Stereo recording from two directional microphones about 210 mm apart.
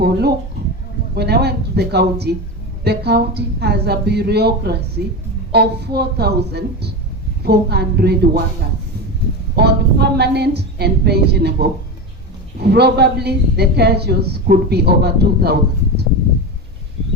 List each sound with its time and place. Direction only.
0.0 s a woman's voice: 50° right (ahead or behind)
9.6 s a woman's voice: 50° right (ahead or behind)